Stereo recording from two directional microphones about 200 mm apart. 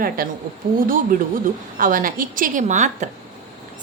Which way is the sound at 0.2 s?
45° right (ahead or behind).